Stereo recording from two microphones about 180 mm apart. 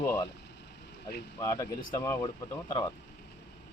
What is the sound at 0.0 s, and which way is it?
Speech, 15° left (ahead or behind).